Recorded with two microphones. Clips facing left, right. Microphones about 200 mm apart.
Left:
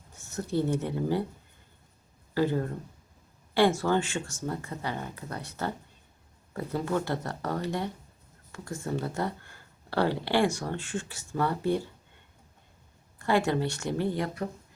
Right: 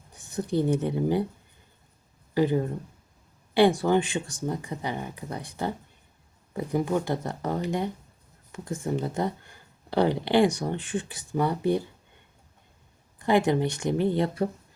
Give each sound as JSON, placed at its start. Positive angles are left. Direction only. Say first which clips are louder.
{"t": 0.1, "sound": "speech", "louder": "right 3 dB", "side_deg": -15}
{"t": 2.3, "sound": "speech", "louder": "right 3 dB", "side_deg": -15}
{"t": 13.1, "sound": "speech", "louder": "right 3 dB", "side_deg": -20}